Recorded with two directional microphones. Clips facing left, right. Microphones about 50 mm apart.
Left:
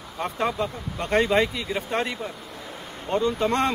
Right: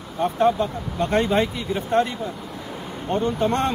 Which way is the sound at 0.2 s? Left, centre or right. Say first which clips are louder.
Right 6 dB; left.